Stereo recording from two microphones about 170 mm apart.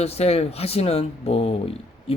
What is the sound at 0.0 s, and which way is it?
A man's voice, 35° left (ahead or behind).